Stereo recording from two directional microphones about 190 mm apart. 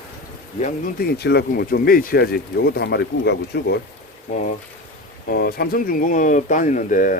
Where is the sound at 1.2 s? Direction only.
60° left (ahead or behind).